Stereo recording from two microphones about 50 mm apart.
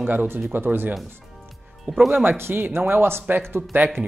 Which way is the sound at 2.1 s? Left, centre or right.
Right.